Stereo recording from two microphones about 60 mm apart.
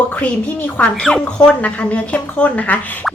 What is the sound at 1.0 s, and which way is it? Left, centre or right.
Speech, centre.